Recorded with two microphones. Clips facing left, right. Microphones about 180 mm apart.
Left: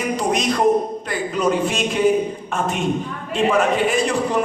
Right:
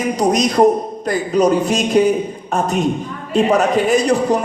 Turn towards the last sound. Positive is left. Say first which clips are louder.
# right 5 dB
turn(degrees=-40)  # may be behind; listen again after turning